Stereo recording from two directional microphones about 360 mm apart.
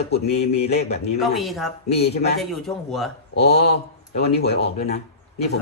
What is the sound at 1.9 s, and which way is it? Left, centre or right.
Speech, left.